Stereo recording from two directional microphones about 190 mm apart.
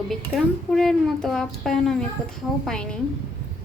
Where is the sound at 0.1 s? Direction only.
Centre (ahead or behind).